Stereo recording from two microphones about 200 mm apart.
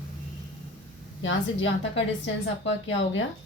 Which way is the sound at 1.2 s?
70° left (ahead or behind).